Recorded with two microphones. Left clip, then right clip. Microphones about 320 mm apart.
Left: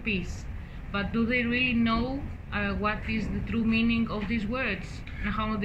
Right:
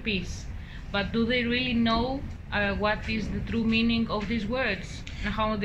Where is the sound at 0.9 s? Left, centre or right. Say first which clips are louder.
Right 1 dB; right.